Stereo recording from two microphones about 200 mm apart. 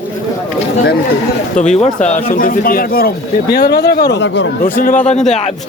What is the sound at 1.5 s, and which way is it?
Speech, 35° left (ahead or behind).